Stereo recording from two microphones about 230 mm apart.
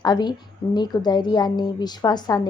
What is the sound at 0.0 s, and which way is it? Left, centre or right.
A woman's voice, centre.